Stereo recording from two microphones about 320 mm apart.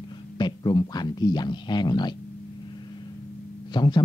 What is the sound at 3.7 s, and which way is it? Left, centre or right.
Speech, centre.